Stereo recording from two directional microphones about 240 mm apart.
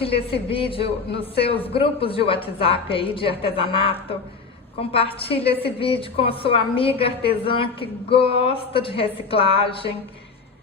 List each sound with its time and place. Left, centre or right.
0.0 s a woman's voice: left